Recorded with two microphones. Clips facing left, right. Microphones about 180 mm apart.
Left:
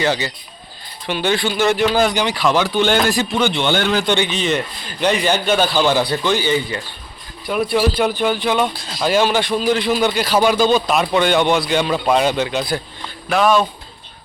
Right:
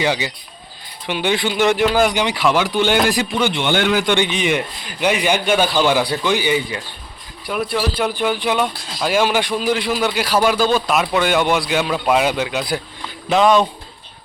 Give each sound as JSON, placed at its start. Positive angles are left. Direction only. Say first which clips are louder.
{"t": 0.0, "sound": "a man's voice", "louder": "left 1 dB", "side_deg": -10}
{"t": 8.1, "sound": "a man's voice", "louder": "left 1 dB", "side_deg": -10}
{"t": 13.2, "sound": "speech", "louder": "right 1 dB", "side_deg": -20}